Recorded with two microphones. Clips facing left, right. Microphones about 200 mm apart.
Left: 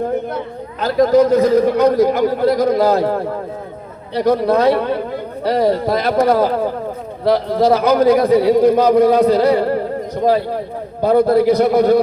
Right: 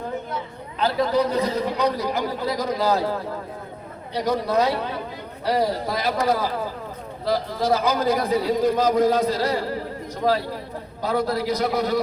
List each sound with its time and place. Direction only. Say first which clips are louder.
0.3 s a man's voice: left 7 dB; 50° left (ahead or behind)
11.0 s a man's voice: left 11 dB; 55° left (ahead or behind)